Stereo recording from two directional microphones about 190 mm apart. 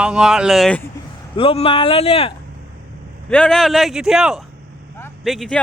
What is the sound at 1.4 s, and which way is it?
Speech, 30° left (ahead or behind).